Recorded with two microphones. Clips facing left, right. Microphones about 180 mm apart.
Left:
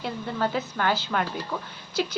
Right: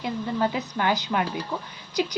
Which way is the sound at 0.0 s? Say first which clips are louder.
Right 2 dB; 15° right (ahead or behind).